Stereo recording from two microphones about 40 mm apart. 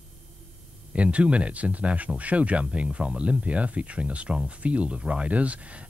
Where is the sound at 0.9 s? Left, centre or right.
Right.